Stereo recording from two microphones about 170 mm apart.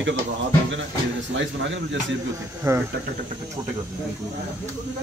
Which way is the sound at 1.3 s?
90° right.